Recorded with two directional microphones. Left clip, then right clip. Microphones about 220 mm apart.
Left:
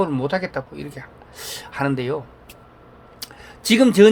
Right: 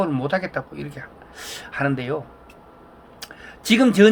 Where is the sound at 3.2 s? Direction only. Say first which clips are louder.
Left 3 dB; 40° left (ahead or behind).